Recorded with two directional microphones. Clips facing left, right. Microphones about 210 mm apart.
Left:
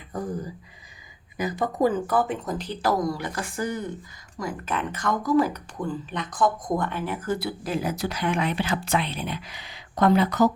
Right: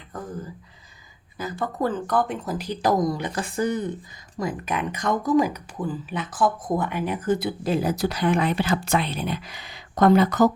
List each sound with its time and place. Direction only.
1.4 s speech: 15° left (ahead or behind); by 5.5 s 15° right (ahead or behind)
5.5 s speech: 5° right (ahead or behind); by 10.5 s 50° right (ahead or behind)